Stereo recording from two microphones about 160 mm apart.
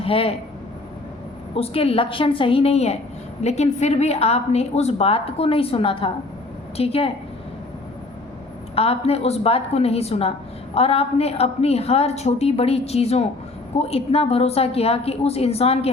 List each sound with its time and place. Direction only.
0.0 s speech: 35° left (ahead or behind)
1.5 s a woman's voice: 35° left (ahead or behind)
8.7 s a woman's voice: 40° left (ahead or behind)